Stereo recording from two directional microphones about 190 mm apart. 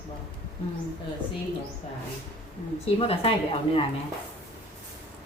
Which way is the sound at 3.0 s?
30° left (ahead or behind).